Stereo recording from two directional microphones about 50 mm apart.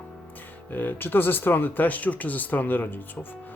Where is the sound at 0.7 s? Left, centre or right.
Left.